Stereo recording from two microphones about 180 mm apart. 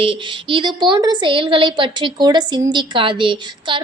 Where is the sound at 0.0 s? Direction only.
30° right (ahead or behind).